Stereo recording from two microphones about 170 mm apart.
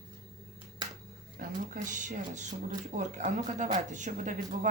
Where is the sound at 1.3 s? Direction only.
50° right (ahead or behind).